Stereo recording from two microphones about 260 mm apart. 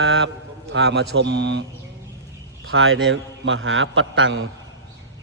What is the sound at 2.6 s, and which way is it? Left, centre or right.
A man's voice, right.